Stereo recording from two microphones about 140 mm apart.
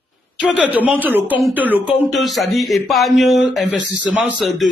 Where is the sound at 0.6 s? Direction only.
10° right (ahead or behind).